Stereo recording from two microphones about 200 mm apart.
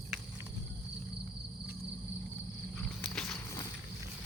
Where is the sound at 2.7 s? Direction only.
Centre (ahead or behind).